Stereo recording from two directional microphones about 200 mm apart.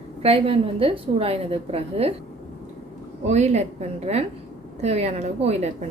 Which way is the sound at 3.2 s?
35° right (ahead or behind).